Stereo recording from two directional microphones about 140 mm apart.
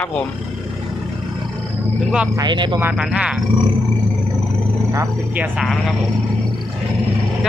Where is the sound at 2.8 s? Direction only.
5° right (ahead or behind).